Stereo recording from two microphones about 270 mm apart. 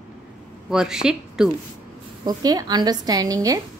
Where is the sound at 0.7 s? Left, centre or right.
Centre.